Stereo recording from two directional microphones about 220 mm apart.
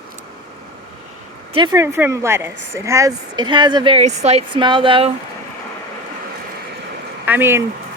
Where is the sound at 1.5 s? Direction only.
20° right (ahead or behind).